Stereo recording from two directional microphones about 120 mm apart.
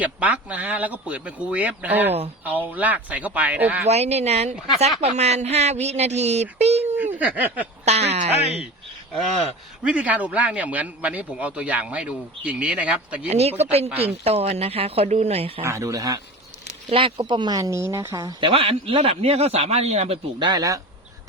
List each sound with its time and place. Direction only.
0.0 s a man's voice: 10° right (ahead or behind)
3.8 s a man's voice: 60° right (ahead or behind)
7.0 s a man's voice: 15° right (ahead or behind)
7.9 s a man's voice: 60° right (ahead or behind)
9.8 s a man's voice: 10° right (ahead or behind)
13.2 s a man's voice: 60° right (ahead or behind)
15.6 s speech: 25° right (ahead or behind)
18.2 s a man's voice: 40° right (ahead or behind); by 20.1 s 65° right (ahead or behind)
20.4 s speech: 35° right (ahead or behind)